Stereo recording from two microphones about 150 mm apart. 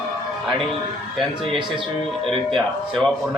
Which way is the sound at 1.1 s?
Centre (ahead or behind).